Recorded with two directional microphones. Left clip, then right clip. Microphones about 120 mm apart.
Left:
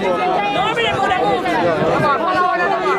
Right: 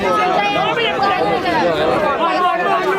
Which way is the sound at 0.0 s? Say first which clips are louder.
Right 2 dB; 35° right (ahead or behind).